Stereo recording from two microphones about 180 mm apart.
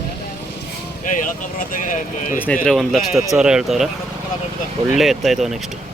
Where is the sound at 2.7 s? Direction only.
Centre (ahead or behind).